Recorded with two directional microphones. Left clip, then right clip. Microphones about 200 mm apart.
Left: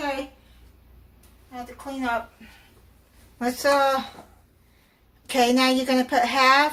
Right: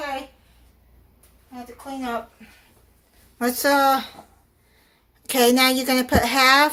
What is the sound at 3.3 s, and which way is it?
Speech, 50° right (ahead or behind).